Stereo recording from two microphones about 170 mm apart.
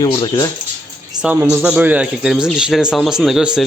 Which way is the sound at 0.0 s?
25° left (ahead or behind).